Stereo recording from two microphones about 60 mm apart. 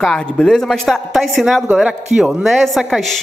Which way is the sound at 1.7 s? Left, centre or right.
Centre.